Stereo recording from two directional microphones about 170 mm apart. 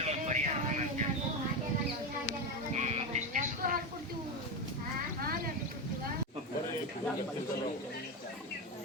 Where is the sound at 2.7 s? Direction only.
40° right (ahead or behind).